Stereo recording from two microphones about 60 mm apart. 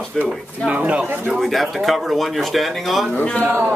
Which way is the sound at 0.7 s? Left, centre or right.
Right.